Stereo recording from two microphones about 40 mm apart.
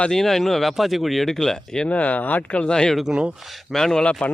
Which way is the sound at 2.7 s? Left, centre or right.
Centre.